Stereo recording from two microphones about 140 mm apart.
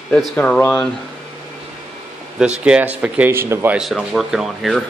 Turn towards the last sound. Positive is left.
turn(degrees=0)  # may be behind; listen again after turning